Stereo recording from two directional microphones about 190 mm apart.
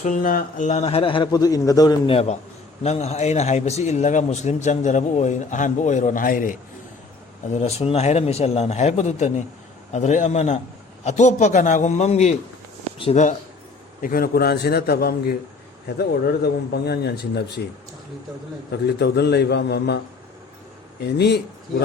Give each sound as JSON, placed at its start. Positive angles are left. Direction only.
{"t": 0.0, "sound": "a man's voice", "side_deg": 45}
{"t": 7.5, "sound": "a man's voice", "side_deg": 35}
{"t": 14.0, "sound": "speech", "side_deg": 50}
{"t": 18.9, "sound": "speech", "side_deg": 60}
{"t": 21.0, "sound": "speech", "side_deg": 60}